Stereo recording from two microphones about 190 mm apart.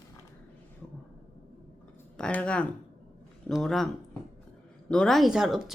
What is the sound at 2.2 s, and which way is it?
A woman's voice, 5° left (ahead or behind).